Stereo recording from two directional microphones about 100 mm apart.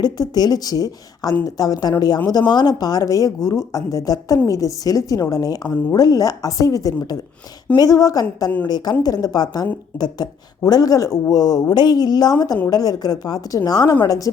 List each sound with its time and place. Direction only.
0.0 s a woman's voice: 40° left (ahead or behind)